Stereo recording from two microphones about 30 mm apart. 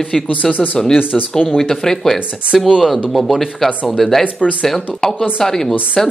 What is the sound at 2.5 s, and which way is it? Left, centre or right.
Speech, centre.